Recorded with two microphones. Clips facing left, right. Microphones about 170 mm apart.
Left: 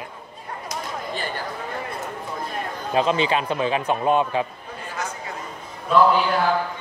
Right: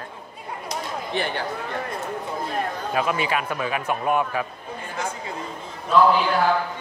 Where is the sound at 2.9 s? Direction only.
25° left (ahead or behind).